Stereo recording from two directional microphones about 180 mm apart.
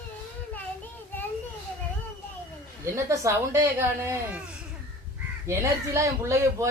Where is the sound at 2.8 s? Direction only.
15° right (ahead or behind).